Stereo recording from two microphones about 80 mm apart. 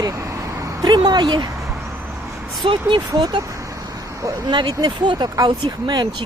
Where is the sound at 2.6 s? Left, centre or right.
Right.